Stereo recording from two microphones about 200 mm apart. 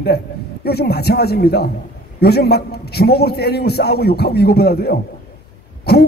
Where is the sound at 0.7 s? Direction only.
55° left (ahead or behind).